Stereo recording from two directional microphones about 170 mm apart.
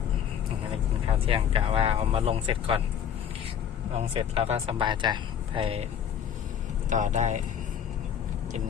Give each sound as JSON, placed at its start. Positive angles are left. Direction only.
{"t": 1.0, "sound": "speech", "side_deg": -35}
{"t": 3.9, "sound": "speech", "side_deg": -35}
{"t": 6.9, "sound": "speech", "side_deg": -45}